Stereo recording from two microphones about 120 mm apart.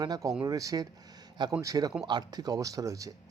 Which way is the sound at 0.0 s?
30° right (ahead or behind).